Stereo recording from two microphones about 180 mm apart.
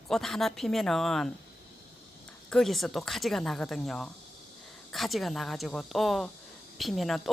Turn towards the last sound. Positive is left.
turn(degrees=0)  # may be behind; listen again after turning